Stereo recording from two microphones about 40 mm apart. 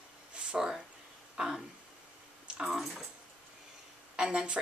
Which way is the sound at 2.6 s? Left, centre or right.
Centre.